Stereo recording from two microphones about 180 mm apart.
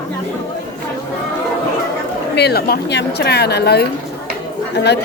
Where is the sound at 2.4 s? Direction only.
60° left (ahead or behind).